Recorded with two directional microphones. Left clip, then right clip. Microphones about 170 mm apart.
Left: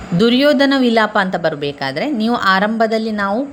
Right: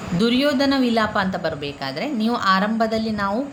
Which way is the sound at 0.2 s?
35° left (ahead or behind).